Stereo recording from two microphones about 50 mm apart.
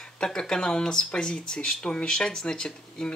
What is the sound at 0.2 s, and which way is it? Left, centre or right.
Speech, centre.